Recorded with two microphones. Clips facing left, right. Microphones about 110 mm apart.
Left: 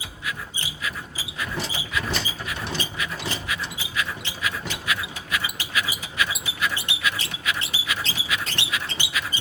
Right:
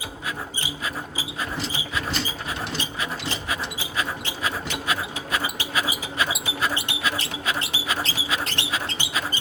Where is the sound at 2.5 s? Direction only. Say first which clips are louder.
Right 1 dB; 30° right (ahead or behind).